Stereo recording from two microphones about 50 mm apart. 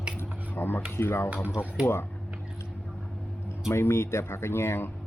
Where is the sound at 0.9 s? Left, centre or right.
Left.